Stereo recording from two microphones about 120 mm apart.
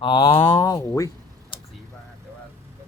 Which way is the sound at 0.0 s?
45° left (ahead or behind).